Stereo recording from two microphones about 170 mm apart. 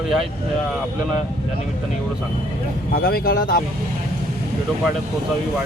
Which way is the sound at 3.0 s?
60° left (ahead or behind).